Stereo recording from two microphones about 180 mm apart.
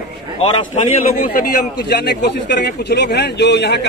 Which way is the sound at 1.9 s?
70° left (ahead or behind).